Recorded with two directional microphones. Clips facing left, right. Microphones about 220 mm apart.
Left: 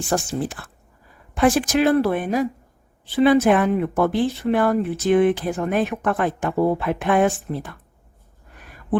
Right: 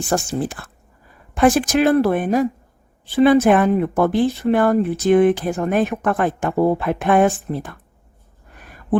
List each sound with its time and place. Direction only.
0.1 s speech: 50° right (ahead or behind)